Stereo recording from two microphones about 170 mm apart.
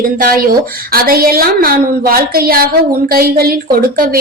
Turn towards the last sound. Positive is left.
turn(degrees=-60)  # may be behind; listen again after turning